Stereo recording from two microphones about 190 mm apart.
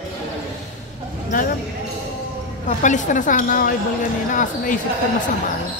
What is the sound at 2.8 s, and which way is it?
Speech, 40° left (ahead or behind).